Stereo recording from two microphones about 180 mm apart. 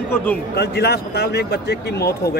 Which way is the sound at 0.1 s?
10° left (ahead or behind).